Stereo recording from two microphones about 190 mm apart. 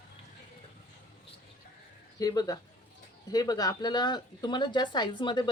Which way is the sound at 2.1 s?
20° left (ahead or behind).